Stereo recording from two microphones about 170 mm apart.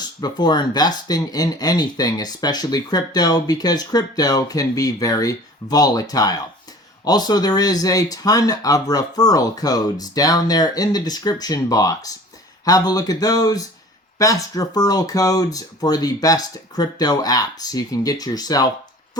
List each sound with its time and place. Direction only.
0.2 s speech: 25° left (ahead or behind)